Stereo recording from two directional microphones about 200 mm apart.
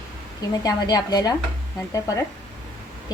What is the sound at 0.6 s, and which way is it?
Speech, 20° left (ahead or behind).